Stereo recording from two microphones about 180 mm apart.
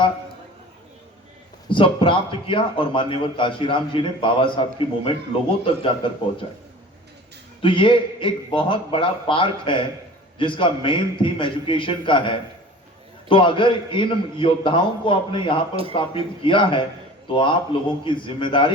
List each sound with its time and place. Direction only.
1.7 s a man's voice: 30° left (ahead or behind)
7.6 s a man's voice: 30° left (ahead or behind)